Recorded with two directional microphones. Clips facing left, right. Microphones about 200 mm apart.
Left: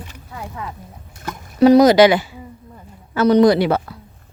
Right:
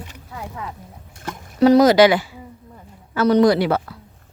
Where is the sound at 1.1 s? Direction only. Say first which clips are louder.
Left 1 dB; 30° right (ahead or behind).